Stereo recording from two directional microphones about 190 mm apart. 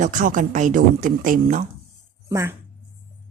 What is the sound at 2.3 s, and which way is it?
Speech, 15° right (ahead or behind).